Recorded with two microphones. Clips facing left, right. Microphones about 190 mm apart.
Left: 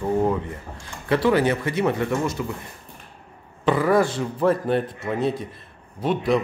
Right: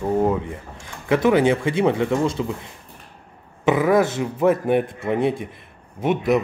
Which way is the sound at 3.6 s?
10° right (ahead or behind).